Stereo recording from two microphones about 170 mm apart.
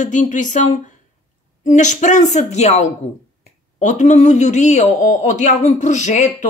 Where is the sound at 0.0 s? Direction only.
45° left (ahead or behind).